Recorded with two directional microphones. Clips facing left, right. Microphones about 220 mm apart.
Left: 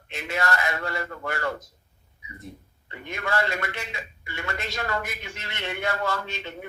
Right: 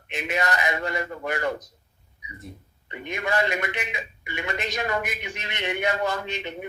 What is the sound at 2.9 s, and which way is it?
A man's voice, 20° right (ahead or behind).